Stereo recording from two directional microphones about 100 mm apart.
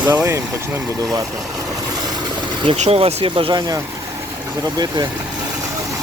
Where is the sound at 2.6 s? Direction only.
75° right (ahead or behind); by 3.7 s 50° right (ahead or behind).